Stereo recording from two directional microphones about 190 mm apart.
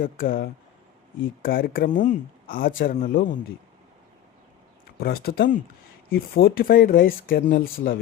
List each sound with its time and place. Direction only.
0.0 s speech: 50° left (ahead or behind)
4.9 s speech: 55° left (ahead or behind)